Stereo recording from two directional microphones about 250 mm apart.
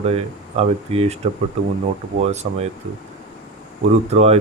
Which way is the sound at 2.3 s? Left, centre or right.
Right.